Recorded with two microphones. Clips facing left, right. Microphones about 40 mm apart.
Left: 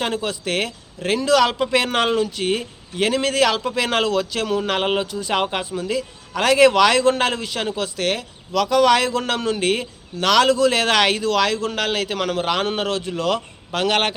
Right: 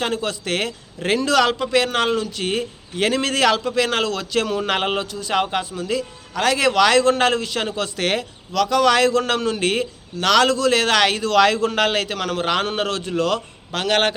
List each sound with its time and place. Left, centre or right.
0.0 s a man's voice: centre
1.5 s speech: centre
2.4 s a man's voice: centre
4.3 s a man's voice: centre
4.9 s a man's voice: centre
11.3 s a man's voice: centre
12.0 s a man's voice: centre